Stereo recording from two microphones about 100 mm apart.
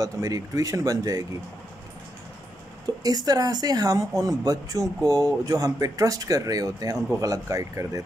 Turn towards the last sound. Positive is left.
turn(degrees=-35)  # may be behind; listen again after turning